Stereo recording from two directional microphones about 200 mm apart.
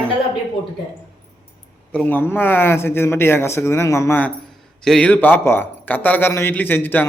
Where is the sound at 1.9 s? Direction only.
5° left (ahead or behind).